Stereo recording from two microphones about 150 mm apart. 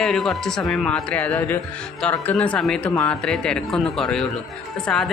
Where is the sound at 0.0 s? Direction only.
Centre (ahead or behind).